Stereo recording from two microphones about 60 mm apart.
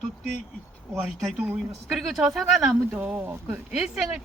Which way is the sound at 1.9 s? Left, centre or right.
Centre.